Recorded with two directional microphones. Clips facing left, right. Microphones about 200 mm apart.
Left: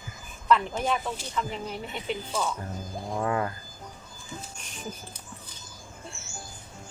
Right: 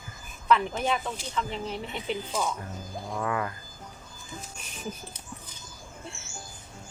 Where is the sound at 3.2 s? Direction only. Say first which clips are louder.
Left 3 dB; 35° left (ahead or behind).